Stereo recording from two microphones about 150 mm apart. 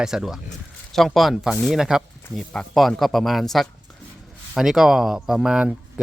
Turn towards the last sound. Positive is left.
turn(degrees=-5)  # may be behind; listen again after turning